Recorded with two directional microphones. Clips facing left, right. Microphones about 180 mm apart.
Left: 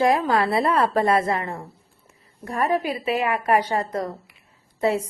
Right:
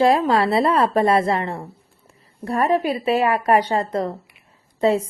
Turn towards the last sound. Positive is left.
turn(degrees=-30)  # may be behind; listen again after turning